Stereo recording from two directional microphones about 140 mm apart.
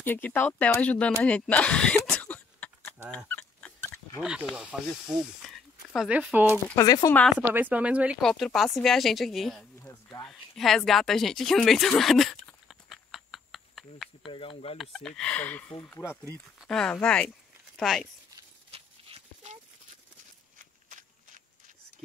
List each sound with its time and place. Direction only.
0.0 s speech: 15° left (ahead or behind)
1.2 s throat clearing: 10° left (ahead or behind)
3.3 s a sound: 10° left (ahead or behind)
4.2 s speech: 5° right (ahead or behind)
6.7 s speech: 25° left (ahead or behind)
7.3 s speech: 10° right (ahead or behind)
8.2 s speech: 5° left (ahead or behind)
10.9 s a sound: centre (ahead or behind)
14.2 s speech: 40° left (ahead or behind)
14.8 s speech: centre (ahead or behind); by 16.1 s 15° left (ahead or behind)
16.5 s speech: 5° left (ahead or behind)
18.7 s dog: 40° right (ahead or behind)
20.5 s a sound: 70° right (ahead or behind)